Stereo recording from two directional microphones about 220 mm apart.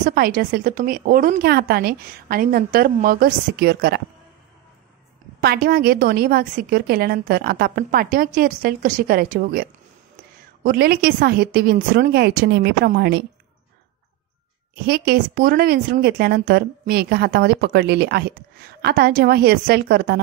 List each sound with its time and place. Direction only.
0.0 s a woman's voice: 40° right (ahead or behind)
5.4 s speech: 45° right (ahead or behind)
14.9 s speech: 40° right (ahead or behind)